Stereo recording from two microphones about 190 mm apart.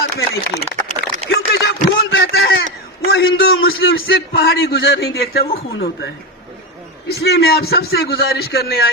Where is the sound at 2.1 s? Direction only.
60° left (ahead or behind).